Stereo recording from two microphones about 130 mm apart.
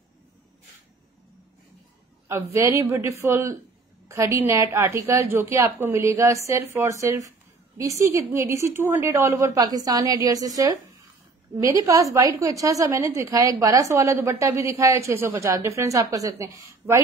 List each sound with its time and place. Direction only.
2.2 s a woman's voice: 20° right (ahead or behind)